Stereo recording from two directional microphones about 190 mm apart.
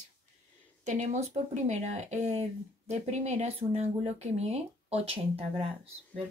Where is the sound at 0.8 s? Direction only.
40° right (ahead or behind).